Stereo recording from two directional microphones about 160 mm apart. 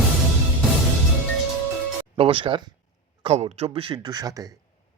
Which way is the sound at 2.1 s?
35° right (ahead or behind).